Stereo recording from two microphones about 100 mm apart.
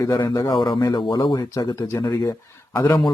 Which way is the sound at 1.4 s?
35° left (ahead or behind).